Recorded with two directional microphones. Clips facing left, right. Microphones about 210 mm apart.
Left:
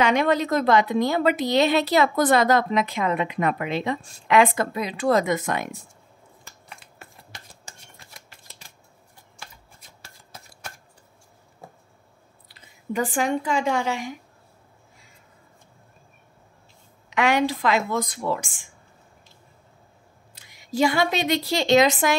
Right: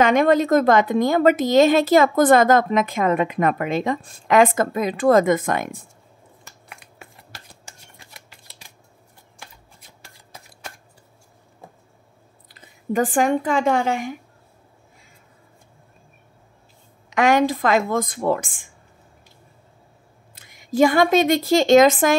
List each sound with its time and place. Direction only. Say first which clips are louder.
0.0 s a woman's voice: right 5 dB; 50° right (ahead or behind)
6.7 s a sound: right 1 dB; 10° right (ahead or behind)
12.9 s a woman's voice: right 5 dB; 50° right (ahead or behind)
17.1 s a woman's voice: right 4 dB; 45° right (ahead or behind)
20.3 s a woman's voice: right 6 dB; 50° right (ahead or behind)